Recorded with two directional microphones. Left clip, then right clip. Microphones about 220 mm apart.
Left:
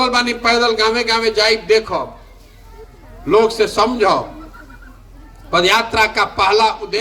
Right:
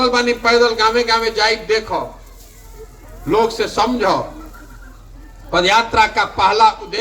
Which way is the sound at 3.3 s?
50° left (ahead or behind).